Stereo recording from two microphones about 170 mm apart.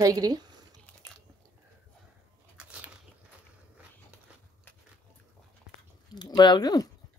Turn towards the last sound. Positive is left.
turn(degrees=20)  # may be behind; listen again after turning